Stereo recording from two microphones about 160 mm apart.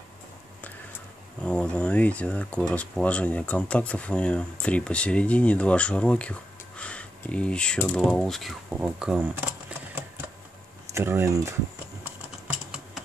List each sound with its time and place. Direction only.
1.4 s speech: 5° left (ahead or behind); by 11.5 s 20° right (ahead or behind)